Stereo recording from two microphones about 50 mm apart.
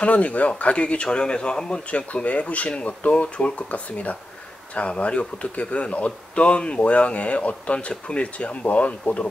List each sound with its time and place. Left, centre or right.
0.0 s speech: left